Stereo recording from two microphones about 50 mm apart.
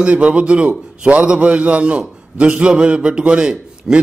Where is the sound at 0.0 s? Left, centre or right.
Right.